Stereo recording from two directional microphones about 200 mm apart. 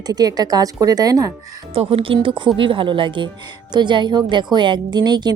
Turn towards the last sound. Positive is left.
turn(degrees=-20)  # may be behind; listen again after turning